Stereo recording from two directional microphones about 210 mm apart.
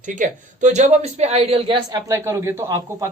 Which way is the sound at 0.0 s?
35° right (ahead or behind).